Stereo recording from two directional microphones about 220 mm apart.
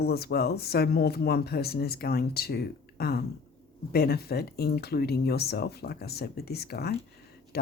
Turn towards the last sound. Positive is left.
turn(degrees=45)  # may be behind; listen again after turning